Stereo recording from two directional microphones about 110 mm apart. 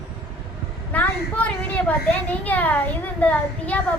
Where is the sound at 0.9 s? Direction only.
15° left (ahead or behind).